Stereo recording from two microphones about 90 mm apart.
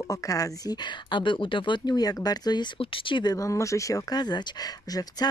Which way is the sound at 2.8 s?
80° left.